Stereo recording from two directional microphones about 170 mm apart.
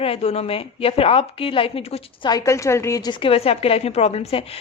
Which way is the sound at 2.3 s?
20° left (ahead or behind).